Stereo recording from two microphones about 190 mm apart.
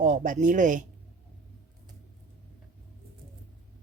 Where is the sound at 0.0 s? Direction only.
40° right (ahead or behind).